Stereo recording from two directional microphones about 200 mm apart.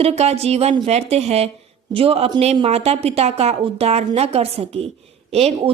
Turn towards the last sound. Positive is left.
turn(degrees=-30)  # may be behind; listen again after turning